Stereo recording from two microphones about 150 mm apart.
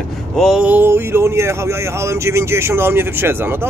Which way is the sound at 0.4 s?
Centre (ahead or behind).